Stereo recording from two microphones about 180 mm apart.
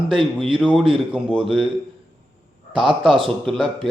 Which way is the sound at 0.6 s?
Centre (ahead or behind).